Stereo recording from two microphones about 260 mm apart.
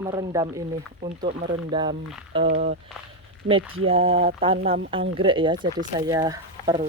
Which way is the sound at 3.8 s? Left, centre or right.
Right.